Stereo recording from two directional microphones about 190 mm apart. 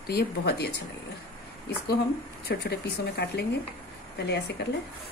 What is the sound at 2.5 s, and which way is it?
Speech, 60° left (ahead or behind).